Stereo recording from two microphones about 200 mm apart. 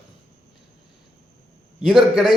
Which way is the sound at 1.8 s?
Centre (ahead or behind).